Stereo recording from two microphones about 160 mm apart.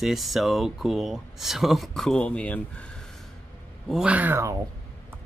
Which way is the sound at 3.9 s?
10° right (ahead or behind).